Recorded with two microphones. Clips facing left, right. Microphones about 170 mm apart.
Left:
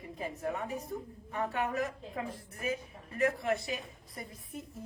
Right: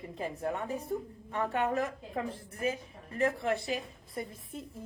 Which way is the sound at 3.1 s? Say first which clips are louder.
Right 1 dB; 30° right (ahead or behind).